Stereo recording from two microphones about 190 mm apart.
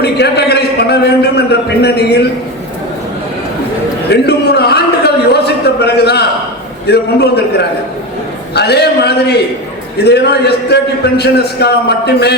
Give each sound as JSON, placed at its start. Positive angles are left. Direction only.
{"t": 0.0, "sound": "a man's voice", "side_deg": 60}
{"t": 4.1, "sound": "a sound", "side_deg": 60}
{"t": 6.8, "sound": "a man's voice", "side_deg": 60}
{"t": 8.5, "sound": "a man's voice", "side_deg": 60}